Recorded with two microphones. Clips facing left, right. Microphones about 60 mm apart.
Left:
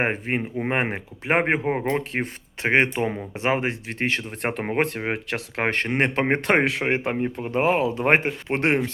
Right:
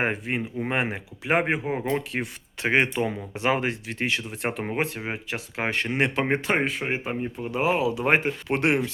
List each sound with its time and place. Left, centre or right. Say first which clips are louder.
0.0 s speech: left 2 dB; left